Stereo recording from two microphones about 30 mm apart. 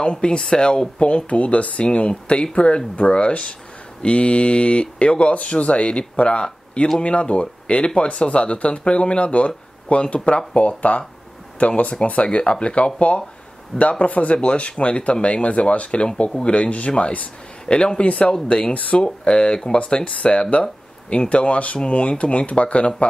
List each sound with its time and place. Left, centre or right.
0.0 s speech: left
1.3 s speech: left
2.0 s speech: left
17.6 s speech: left
18.7 s speech: left
19.2 s speech: left
20.1 s speech: left